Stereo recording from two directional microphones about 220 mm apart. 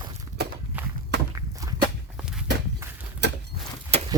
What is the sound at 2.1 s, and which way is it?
Walk, 5° right (ahead or behind).